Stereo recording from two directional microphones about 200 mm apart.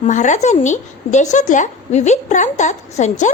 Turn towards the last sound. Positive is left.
turn(degrees=35)  # may be behind; listen again after turning